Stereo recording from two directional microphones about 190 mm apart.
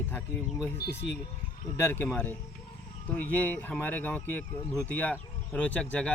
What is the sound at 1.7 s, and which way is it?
Speech, 10° left (ahead or behind).